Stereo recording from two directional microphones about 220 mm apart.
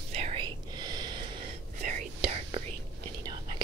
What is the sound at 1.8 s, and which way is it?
Whispering, 30° right (ahead or behind).